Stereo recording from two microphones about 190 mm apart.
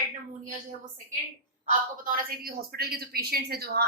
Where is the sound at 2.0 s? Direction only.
50° right (ahead or behind).